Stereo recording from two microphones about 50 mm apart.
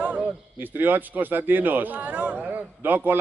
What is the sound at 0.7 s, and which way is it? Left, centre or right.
Speech, right.